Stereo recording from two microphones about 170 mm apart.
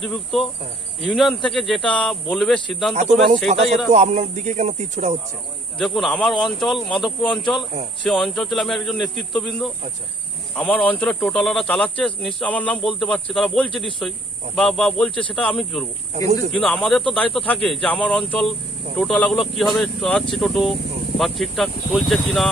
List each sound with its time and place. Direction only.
1.1 s speech: centre (ahead or behind)
2.9 s speech: 40° right (ahead or behind)
5.8 s speech: centre (ahead or behind)